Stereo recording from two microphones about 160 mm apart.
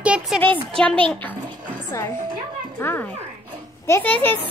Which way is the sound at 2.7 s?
15° left (ahead or behind).